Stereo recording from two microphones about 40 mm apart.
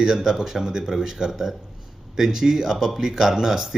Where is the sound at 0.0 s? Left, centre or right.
Centre.